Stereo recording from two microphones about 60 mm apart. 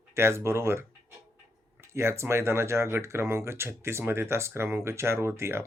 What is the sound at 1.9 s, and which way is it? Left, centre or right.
Speech, right.